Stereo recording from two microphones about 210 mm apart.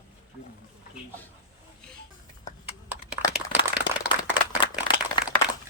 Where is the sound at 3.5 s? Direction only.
10° right (ahead or behind).